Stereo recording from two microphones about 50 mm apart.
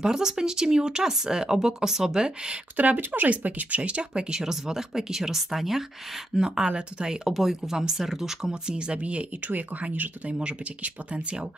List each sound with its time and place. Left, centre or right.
0.0 s speech: centre
2.8 s speech: right